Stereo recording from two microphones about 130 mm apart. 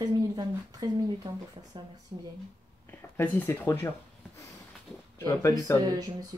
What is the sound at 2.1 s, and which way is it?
Speech, 45° right (ahead or behind).